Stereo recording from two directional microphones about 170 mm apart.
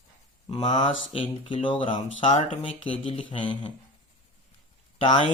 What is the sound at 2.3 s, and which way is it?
Speech, 45° left (ahead or behind).